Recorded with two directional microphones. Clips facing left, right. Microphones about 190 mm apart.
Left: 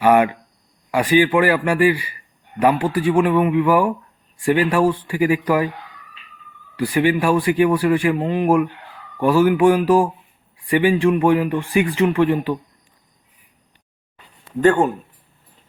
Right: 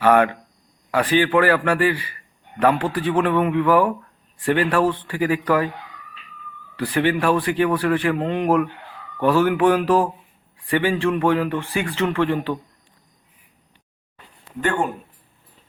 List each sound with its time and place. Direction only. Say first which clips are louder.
0.0 s speech: left 2 dB; 15° left (ahead or behind)
6.7 s speech: left 3 dB; 10° left (ahead or behind)
14.6 s speech: left 8 dB; 40° left (ahead or behind)